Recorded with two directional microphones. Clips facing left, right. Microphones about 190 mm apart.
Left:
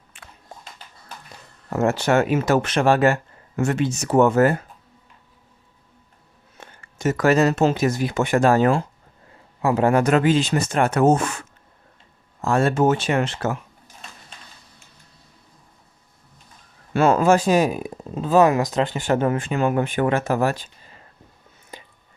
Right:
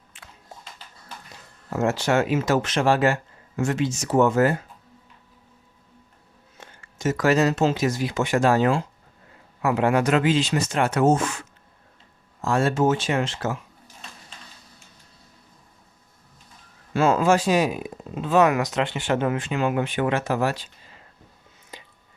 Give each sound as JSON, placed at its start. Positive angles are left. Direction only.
{"t": 0.1, "sound": "a sound", "side_deg": 60}
{"t": 1.7, "sound": "speech", "side_deg": 60}
{"t": 6.6, "sound": "speech", "side_deg": 60}
{"t": 9.6, "sound": "speech", "side_deg": 35}
{"t": 16.9, "sound": "speech", "side_deg": 60}
{"t": 21.7, "sound": "whispering", "side_deg": 50}